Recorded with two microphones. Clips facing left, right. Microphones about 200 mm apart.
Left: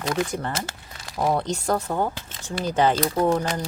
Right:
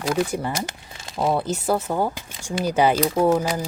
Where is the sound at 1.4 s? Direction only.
5° right (ahead or behind).